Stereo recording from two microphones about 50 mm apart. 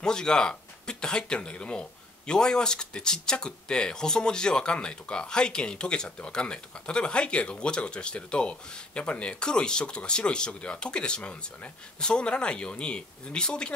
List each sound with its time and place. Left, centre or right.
0.0 s speech: centre